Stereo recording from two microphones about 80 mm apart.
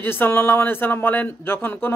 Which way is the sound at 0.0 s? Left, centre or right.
Left.